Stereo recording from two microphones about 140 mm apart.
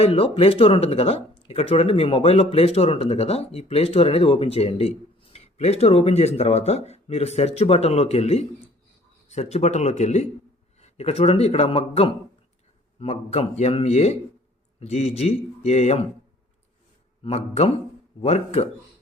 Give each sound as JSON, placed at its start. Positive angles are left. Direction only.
{"t": 0.0, "sound": "speech", "side_deg": 45}
{"t": 17.2, "sound": "speech", "side_deg": 50}